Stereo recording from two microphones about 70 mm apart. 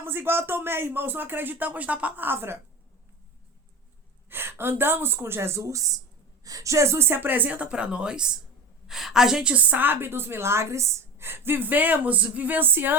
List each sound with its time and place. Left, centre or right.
0.0 s a woman's voice: right
4.3 s a woman's voice: right